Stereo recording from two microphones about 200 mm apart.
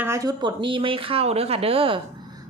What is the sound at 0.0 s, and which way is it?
Speech, 15° right (ahead or behind).